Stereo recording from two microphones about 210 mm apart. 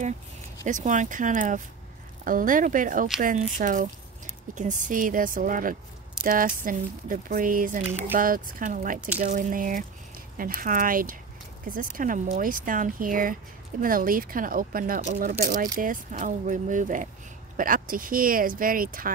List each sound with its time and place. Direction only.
0.7 s speech: 35° right (ahead or behind)